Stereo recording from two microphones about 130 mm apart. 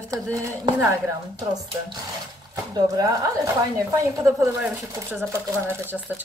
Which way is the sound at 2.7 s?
30° right (ahead or behind).